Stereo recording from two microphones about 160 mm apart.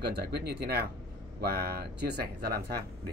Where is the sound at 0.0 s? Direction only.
80° right.